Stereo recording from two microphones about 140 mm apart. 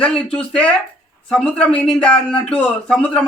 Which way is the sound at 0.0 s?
10° left (ahead or behind).